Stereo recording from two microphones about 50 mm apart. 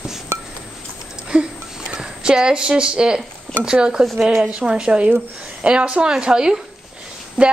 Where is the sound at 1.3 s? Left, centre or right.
Centre.